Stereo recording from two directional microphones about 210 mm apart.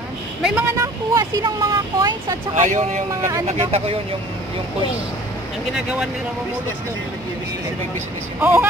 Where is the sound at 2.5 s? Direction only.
35° right (ahead or behind).